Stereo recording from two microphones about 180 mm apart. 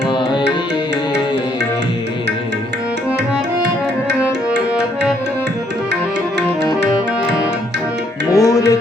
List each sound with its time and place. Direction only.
8.3 s music: 20° left (ahead or behind)